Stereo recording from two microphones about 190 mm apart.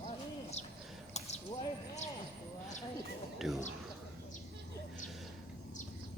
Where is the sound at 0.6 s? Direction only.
35° left (ahead or behind).